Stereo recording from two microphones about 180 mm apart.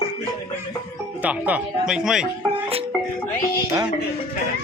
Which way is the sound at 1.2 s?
10° right (ahead or behind).